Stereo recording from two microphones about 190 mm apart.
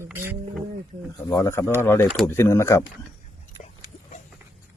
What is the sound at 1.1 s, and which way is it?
Speech, 15° left (ahead or behind).